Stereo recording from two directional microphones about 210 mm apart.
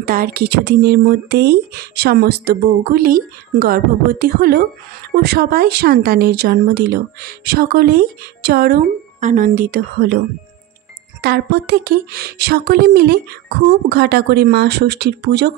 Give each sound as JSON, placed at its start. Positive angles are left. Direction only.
{"t": 0.0, "sound": "speech", "side_deg": -45}
{"t": 11.1, "sound": "speech", "side_deg": -50}